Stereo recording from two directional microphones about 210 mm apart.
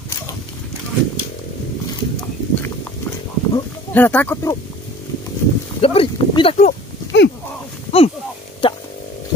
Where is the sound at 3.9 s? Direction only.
10° left (ahead or behind).